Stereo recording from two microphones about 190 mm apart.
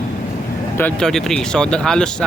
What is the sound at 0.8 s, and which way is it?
Speech, 5° left (ahead or behind).